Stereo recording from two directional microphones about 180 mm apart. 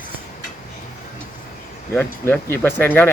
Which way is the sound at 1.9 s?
10° left (ahead or behind).